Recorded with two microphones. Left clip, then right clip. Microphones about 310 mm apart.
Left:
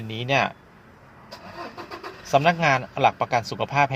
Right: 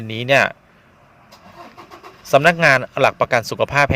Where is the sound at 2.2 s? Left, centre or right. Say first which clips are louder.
Right 7 dB; right.